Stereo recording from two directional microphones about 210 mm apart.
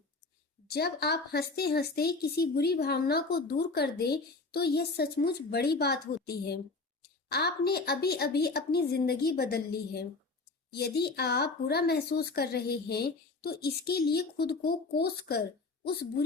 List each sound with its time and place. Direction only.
0.7 s speech: 50° left (ahead or behind)